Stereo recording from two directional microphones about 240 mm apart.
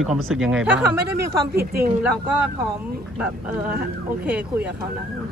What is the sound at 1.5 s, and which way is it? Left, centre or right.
Speech, right.